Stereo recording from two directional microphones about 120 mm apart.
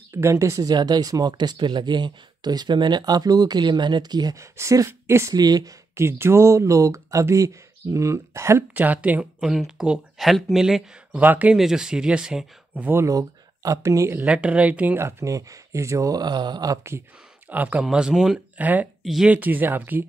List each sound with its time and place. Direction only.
0.1 s speech: 25° right (ahead or behind)
13.0 s speech: 30° right (ahead or behind)
14.2 s speech: 10° right (ahead or behind); by 17.0 s 25° right (ahead or behind)
17.5 s speech: 15° right (ahead or behind)
19.0 s speech: centre (ahead or behind)
19.3 s speech: 15° right (ahead or behind)